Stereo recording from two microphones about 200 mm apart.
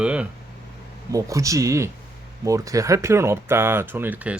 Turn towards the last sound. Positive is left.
turn(degrees=-10)  # may be behind; listen again after turning